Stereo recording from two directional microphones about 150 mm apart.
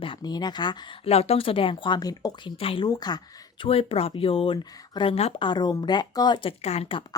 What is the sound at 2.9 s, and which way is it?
Speech, 25° left (ahead or behind).